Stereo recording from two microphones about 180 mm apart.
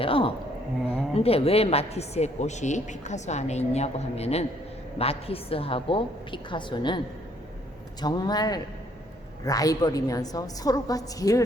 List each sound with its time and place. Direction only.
0.0 s a woman's voice: 30° left (ahead or behind)
8.0 s a woman's voice: 20° left (ahead or behind)